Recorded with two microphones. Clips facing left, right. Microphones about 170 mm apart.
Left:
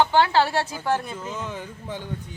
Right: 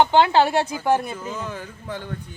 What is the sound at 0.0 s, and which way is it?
Speech, 20° right (ahead or behind).